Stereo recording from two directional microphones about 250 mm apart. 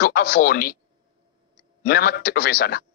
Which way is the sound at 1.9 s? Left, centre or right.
Left.